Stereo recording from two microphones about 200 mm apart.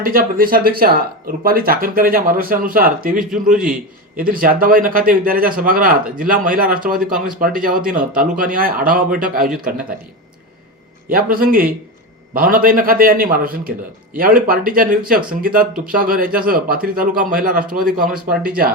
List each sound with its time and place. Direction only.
0.0 s speech: 45° right (ahead or behind)
11.1 s speech: 45° right (ahead or behind)